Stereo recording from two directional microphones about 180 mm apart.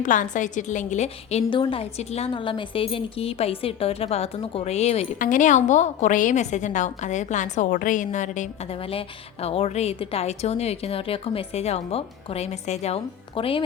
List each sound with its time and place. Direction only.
0.0 s a woman's voice: 45° left (ahead or behind); by 13.6 s 30° left (ahead or behind)